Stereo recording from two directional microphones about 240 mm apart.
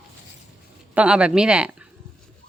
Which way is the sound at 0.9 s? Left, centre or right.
Centre.